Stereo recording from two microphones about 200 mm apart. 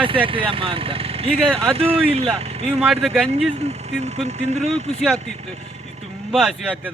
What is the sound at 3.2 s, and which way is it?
Speech, 30° right (ahead or behind).